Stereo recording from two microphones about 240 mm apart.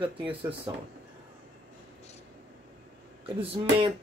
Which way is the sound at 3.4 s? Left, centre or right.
Right.